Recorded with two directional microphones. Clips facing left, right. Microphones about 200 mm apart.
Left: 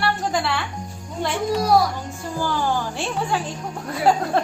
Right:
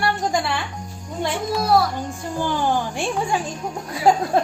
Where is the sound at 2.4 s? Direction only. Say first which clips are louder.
Right 1 dB; 20° right (ahead or behind).